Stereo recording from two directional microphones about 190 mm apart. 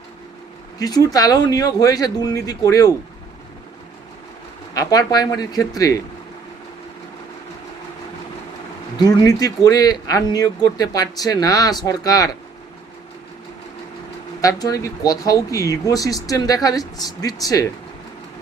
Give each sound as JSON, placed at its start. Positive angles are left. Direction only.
{"t": 0.8, "sound": "speech", "side_deg": 20}
{"t": 4.7, "sound": "speech", "side_deg": 20}
{"t": 9.0, "sound": "speech", "side_deg": 20}
{"t": 14.4, "sound": "speech", "side_deg": 20}